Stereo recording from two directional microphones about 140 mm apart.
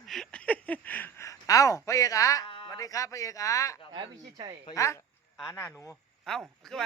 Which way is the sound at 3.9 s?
30° right (ahead or behind).